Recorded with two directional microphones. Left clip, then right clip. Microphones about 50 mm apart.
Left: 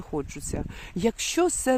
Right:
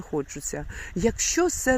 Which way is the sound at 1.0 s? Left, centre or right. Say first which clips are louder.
Right 1 dB; left.